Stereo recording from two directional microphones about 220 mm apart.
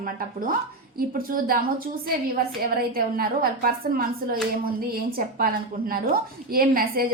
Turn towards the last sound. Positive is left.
turn(degrees=-40)  # may be behind; listen again after turning